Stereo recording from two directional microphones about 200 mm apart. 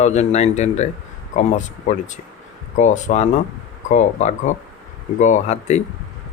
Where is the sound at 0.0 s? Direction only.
35° left (ahead or behind).